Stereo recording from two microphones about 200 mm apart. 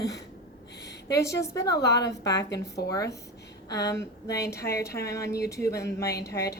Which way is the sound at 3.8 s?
15° left (ahead or behind).